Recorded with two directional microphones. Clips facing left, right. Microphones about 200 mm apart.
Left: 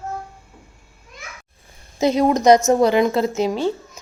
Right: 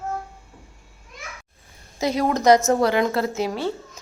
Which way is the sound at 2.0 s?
20° left (ahead or behind).